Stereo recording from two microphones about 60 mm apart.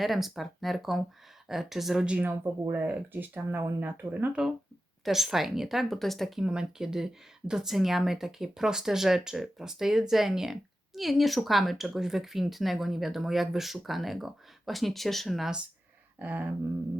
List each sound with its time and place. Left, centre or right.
0.0 s speech: centre
2.0 s a sound: right
2.7 s speech: right
4.3 s speech: centre
6.4 s speech: centre
16.1 s a sound: right